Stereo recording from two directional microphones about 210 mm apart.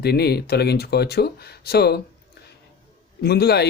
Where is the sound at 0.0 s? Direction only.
50° left (ahead or behind).